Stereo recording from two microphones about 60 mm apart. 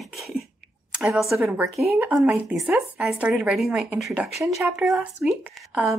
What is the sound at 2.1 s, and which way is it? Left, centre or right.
Speech, centre.